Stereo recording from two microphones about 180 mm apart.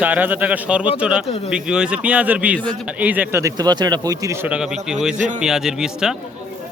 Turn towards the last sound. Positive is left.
turn(degrees=-5)  # may be behind; listen again after turning